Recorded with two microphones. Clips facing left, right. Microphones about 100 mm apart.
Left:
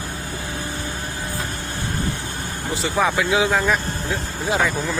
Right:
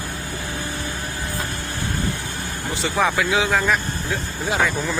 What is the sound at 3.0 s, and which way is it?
Speech, 20° left (ahead or behind).